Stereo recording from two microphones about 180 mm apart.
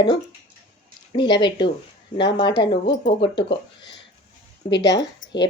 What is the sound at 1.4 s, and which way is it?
Speech, 25° left (ahead or behind).